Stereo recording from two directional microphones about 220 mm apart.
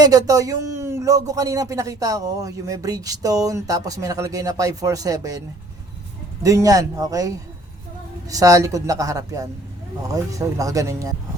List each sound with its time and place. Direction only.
0.0 s speech: 15° right (ahead or behind)
6.4 s speech: 15° right (ahead or behind)